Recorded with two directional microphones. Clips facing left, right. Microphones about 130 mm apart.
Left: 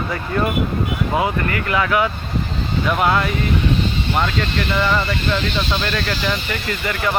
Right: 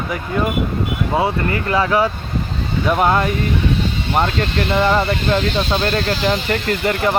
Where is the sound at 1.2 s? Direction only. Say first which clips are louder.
Right 3 dB; 30° right (ahead or behind).